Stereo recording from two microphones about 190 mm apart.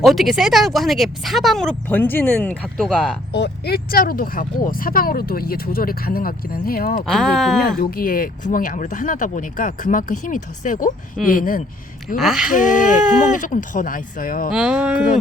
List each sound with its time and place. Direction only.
0.0 s speech: centre (ahead or behind)
3.3 s speech: 60° left (ahead or behind)
7.0 s speech: centre (ahead or behind)
7.8 s speech: 50° left (ahead or behind)
12.1 s speech: centre (ahead or behind)
12.5 s speech: 45° left (ahead or behind)
14.5 s speech: 5° right (ahead or behind)